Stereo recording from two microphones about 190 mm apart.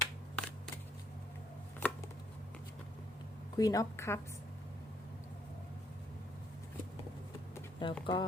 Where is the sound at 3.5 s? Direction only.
20° left (ahead or behind).